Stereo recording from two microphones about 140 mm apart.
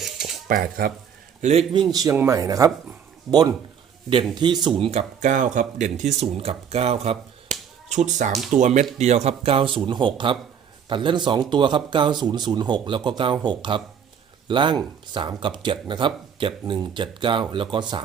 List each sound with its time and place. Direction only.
0.0 s cutlery: centre (ahead or behind)
0.4 s speech: 80° right
1.4 s a man's voice: 55° right (ahead or behind)
1.9 s speech: 25° right (ahead or behind)
3.3 s speech: centre (ahead or behind)
4.1 s speech: 35° right (ahead or behind)
4.9 s speech: 55° right (ahead or behind); by 18.0 s 35° right (ahead or behind)